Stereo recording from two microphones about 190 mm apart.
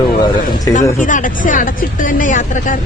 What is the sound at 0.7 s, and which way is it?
Speech, 45° left (ahead or behind).